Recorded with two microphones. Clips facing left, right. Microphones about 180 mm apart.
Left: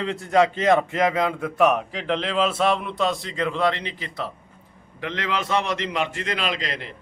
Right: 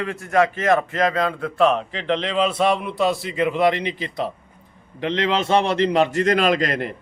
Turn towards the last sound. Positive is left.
turn(degrees=-50)  # may be behind; listen again after turning